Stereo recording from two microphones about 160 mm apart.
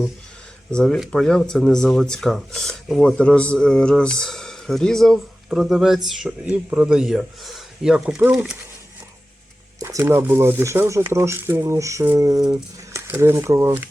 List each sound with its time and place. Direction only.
0.7 s speech: 5° left (ahead or behind)
9.8 s speech: 15° right (ahead or behind)